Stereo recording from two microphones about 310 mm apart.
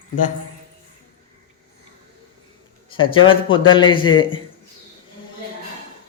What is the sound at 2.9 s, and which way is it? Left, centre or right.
A man's voice, centre.